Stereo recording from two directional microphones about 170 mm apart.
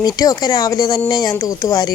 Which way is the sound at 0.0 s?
25° left (ahead or behind).